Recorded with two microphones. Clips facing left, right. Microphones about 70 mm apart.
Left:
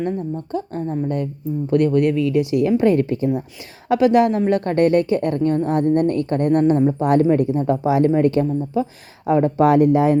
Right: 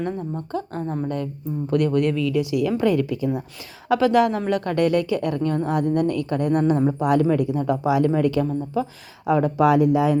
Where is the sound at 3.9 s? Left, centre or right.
Left.